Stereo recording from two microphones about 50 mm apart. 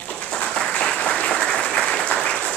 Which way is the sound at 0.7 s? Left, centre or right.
Left.